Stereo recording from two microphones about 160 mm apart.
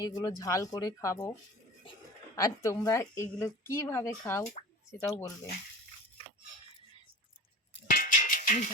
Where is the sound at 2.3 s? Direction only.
20° left (ahead or behind).